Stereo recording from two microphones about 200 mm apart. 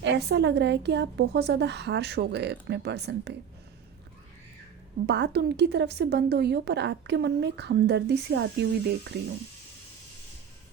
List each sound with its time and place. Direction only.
0.0 s speech: 55° right (ahead or behind)
5.0 s speech: 60° right (ahead or behind)